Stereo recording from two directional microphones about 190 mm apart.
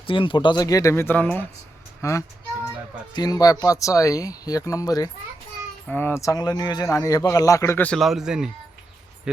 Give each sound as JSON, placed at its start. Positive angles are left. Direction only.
{"t": 0.1, "sound": "a man's voice", "side_deg": 25}